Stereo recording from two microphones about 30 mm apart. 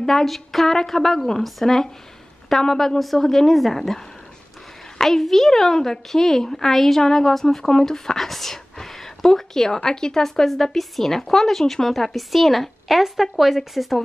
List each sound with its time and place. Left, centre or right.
0.0 s a woman's voice: centre
0.7 s a woman's voice: centre
4.9 s a sound: centre
5.2 s a woman's voice: centre
7.0 s a woman's voice: centre
8.3 s a woman's voice: centre
8.7 s a sound: centre
9.8 s speech: left
10.5 s a woman's voice: centre